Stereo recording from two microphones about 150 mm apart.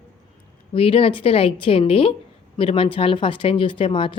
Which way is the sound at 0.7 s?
40° left (ahead or behind).